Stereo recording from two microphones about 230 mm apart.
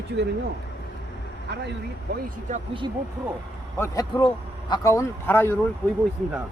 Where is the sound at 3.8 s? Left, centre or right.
Centre.